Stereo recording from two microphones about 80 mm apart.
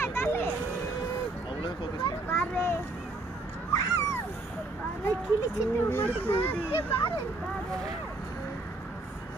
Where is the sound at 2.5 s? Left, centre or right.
Left.